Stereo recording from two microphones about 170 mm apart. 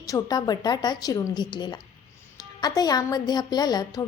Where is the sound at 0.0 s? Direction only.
20° left (ahead or behind).